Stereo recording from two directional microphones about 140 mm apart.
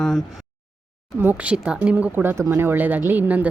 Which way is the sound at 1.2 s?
10° right (ahead or behind).